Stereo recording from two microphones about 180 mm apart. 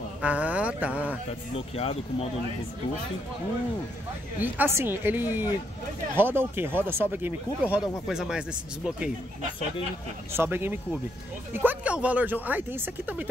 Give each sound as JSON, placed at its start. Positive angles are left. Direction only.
{"t": 0.2, "sound": "a sound", "side_deg": -10}
{"t": 1.5, "sound": "speech", "side_deg": 35}
{"t": 4.4, "sound": "speech", "side_deg": -10}
{"t": 10.3, "sound": "speech", "side_deg": -10}